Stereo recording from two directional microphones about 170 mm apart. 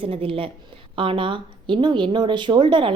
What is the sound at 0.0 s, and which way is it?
A woman's voice, 30° right (ahead or behind).